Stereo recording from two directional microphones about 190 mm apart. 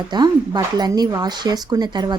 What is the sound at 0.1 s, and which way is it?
Speech, 20° right (ahead or behind).